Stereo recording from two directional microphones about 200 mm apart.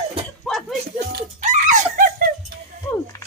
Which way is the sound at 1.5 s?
40° right (ahead or behind).